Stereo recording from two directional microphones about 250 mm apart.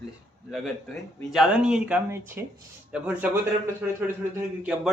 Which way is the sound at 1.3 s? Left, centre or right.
Centre.